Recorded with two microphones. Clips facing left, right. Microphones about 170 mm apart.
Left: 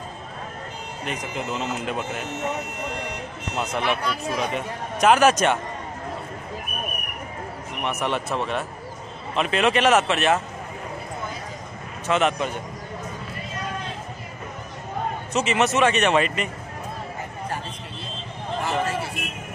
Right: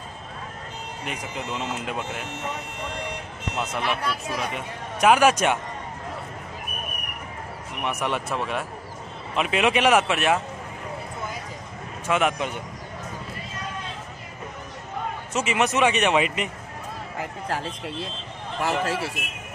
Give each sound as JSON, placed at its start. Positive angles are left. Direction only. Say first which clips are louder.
{"t": 1.0, "sound": "a man's voice", "louder": "left 3 dB", "side_deg": -10}
{"t": 3.8, "sound": "a man's voice", "louder": "left 2 dB", "side_deg": 0}
{"t": 7.8, "sound": "a man's voice", "louder": "left 1 dB", "side_deg": -10}
{"t": 12.1, "sound": "a man's voice", "louder": "left 1 dB", "side_deg": -10}
{"t": 15.3, "sound": "a man's voice", "louder": "left 2 dB", "side_deg": -10}
{"t": 17.2, "sound": "a sound", "louder": "right 5 dB", "side_deg": -90}
{"t": 18.6, "sound": "a man's voice", "louder": "right 1 dB", "side_deg": -85}